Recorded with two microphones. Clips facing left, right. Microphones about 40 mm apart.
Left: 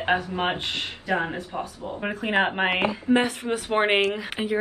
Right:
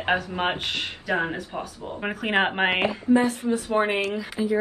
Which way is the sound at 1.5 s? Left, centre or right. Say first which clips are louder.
Left 1 dB; centre.